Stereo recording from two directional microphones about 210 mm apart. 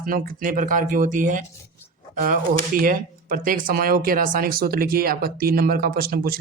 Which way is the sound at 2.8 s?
40° right (ahead or behind).